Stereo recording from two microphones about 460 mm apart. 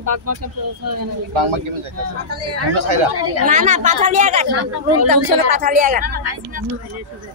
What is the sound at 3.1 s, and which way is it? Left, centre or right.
Speech, right.